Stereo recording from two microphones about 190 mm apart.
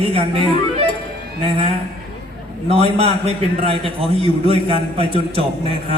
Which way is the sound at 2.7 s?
30° right (ahead or behind).